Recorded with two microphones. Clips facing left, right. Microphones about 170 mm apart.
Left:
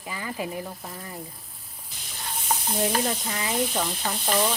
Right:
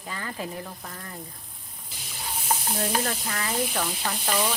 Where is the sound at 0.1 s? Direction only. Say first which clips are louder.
Left 2 dB; 10° left (ahead or behind).